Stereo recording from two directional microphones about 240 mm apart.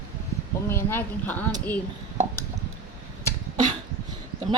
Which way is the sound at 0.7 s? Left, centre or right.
Centre.